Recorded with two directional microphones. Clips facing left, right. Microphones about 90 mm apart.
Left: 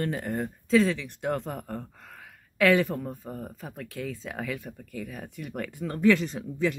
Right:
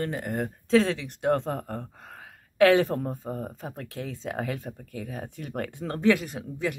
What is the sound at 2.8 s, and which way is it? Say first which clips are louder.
Speech: right 3 dB; 50° right (ahead or behind).